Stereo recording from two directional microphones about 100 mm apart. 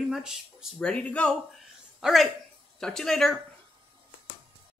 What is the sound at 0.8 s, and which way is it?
Speech, 10° left (ahead or behind).